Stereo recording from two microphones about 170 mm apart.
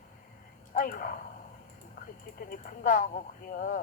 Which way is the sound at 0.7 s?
50° left (ahead or behind).